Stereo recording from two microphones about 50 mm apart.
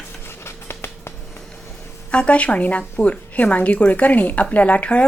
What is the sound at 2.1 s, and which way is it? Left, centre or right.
A woman's voice, left.